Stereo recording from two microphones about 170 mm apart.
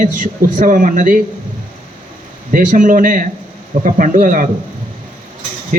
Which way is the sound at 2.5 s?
50° right (ahead or behind).